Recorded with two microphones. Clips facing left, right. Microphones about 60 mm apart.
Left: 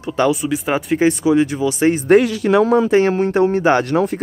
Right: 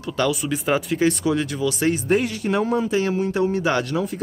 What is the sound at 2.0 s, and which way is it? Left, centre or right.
Speech, left.